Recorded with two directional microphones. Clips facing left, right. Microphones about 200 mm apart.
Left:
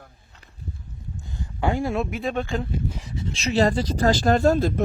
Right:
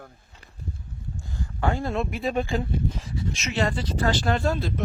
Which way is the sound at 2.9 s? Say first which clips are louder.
Right 1 dB; 15° left (ahead or behind).